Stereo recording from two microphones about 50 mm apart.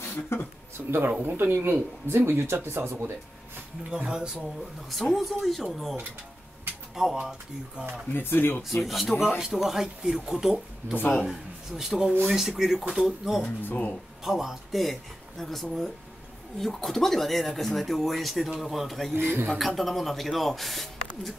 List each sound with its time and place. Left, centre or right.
0.0 s speech: left
0.8 s speech: right
4.1 s speech: centre
5.1 s speech: centre
7.2 s speech: centre
8.1 s speech: left
8.6 s speech: centre
13.6 s speech: left
14.2 s speech: centre
19.1 s speech: right
19.6 s speech: centre